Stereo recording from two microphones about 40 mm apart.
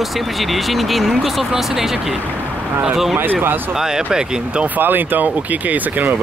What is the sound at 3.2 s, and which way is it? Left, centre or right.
Speech, right.